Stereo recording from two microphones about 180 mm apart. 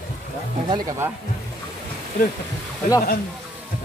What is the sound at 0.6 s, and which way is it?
Speech, 15° right (ahead or behind).